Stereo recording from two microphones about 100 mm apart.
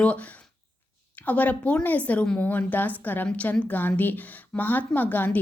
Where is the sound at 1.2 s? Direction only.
15° left (ahead or behind).